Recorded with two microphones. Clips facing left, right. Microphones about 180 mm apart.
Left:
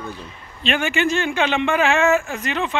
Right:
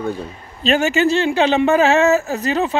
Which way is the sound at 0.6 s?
40° right (ahead or behind).